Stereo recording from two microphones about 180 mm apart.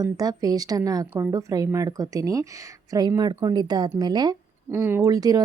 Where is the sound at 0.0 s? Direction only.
20° right (ahead or behind).